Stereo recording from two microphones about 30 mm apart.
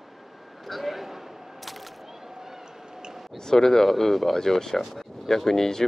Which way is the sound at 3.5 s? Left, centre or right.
Centre.